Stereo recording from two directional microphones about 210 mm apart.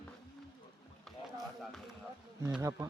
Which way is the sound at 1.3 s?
Centre (ahead or behind).